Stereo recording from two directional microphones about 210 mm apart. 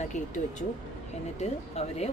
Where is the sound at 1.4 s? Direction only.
30° left (ahead or behind).